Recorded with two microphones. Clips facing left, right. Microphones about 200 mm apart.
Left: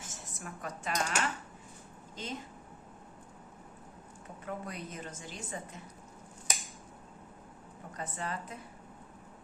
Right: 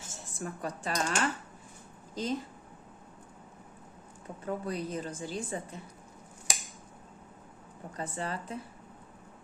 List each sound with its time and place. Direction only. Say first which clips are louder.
0.0 s a woman's voice: right 6 dB; 30° right (ahead or behind)
4.4 s a woman's voice: right 6 dB; 35° right (ahead or behind)
7.9 s a woman's voice: right 3 dB; 30° right (ahead or behind)